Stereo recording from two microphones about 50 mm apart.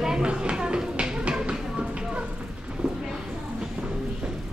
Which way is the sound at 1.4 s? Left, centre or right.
Right.